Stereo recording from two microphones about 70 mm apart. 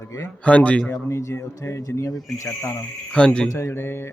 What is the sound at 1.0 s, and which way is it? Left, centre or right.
Speech, left.